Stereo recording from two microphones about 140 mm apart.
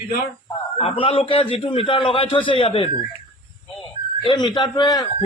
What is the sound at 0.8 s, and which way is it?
A man's voice, 40° left (ahead or behind).